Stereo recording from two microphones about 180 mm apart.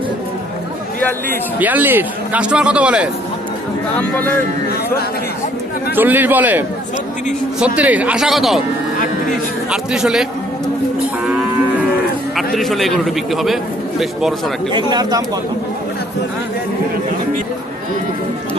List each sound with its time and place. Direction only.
1.5 s a man's voice: 10° right (ahead or behind)
3.9 s speech: 10° left (ahead or behind)
6.0 s a man's voice: 10° right (ahead or behind)
9.6 s a man's voice: 5° right (ahead or behind)
12.5 s a man's voice: centre (ahead or behind)
14.7 s speech: 25° right (ahead or behind)